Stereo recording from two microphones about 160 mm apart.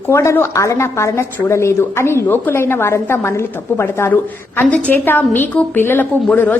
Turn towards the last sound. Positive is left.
turn(degrees=10)  # may be behind; listen again after turning